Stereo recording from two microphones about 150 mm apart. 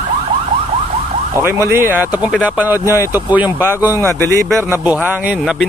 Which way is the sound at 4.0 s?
15° left (ahead or behind).